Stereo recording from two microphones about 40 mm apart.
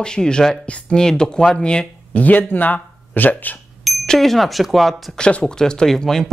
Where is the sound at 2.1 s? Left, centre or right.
Left.